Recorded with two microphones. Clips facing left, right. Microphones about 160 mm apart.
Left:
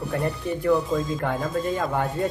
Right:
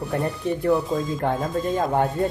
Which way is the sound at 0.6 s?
30° right (ahead or behind).